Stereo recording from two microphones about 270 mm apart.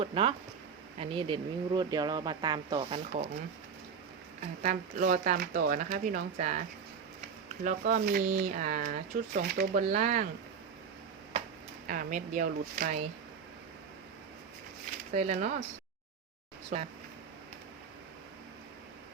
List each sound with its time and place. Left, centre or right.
0.0 s speech: centre
4.6 s speech: right
11.9 s speech: right
15.1 s speech: right
16.7 s speech: right